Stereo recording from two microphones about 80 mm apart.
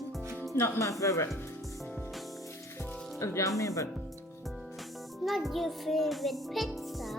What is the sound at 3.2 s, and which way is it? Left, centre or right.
Speech, left.